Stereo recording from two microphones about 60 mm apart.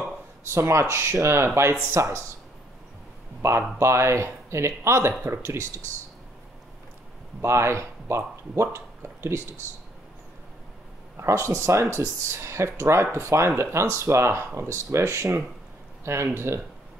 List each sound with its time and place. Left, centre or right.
0.5 s speech: right
3.4 s speech: right
7.4 s speech: right
11.1 s speech: right